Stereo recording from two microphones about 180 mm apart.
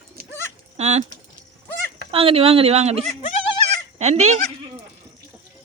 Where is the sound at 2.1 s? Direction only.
30° right (ahead or behind).